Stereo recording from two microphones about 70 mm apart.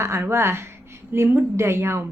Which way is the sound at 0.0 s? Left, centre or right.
Right.